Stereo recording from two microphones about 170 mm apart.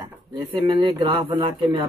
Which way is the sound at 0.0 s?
25° right (ahead or behind).